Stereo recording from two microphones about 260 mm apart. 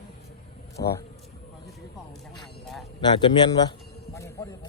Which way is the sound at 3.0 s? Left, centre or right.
Centre.